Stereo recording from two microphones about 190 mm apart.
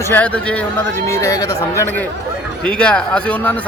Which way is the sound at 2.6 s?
5° left (ahead or behind).